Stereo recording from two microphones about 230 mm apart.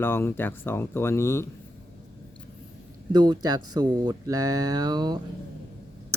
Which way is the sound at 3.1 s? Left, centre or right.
Centre.